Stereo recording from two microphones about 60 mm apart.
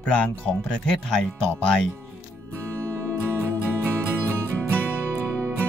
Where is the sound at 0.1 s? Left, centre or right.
Left.